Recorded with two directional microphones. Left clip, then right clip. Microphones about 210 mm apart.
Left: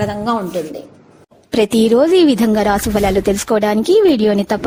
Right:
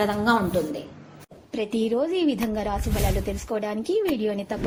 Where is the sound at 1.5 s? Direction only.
60° left (ahead or behind).